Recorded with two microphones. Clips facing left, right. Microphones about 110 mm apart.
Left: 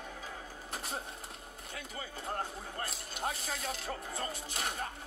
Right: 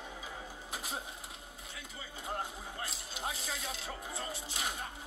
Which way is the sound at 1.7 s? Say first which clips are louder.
Left 6 dB; 50° left (ahead or behind).